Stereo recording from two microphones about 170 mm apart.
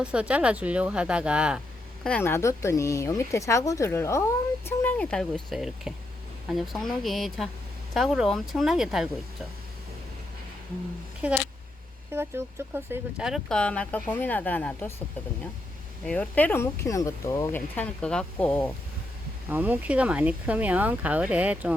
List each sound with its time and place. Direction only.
0.0 s speech: 5° right (ahead or behind)
2.0 s speech: 10° left (ahead or behind)
11.2 s speech: 10° right (ahead or behind); by 14.9 s 10° left (ahead or behind)
16.0 s speech: 5° left (ahead or behind)
19.5 s speech: 10° right (ahead or behind)